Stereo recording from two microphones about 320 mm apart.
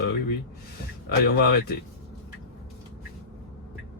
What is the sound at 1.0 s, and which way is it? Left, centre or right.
Speech, left.